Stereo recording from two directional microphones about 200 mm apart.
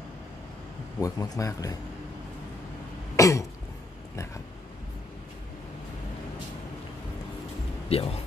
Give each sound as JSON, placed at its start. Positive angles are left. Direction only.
{"t": 1.0, "sound": "speech", "side_deg": 15}
{"t": 3.2, "sound": "cough", "side_deg": 15}
{"t": 7.9, "sound": "speech", "side_deg": 30}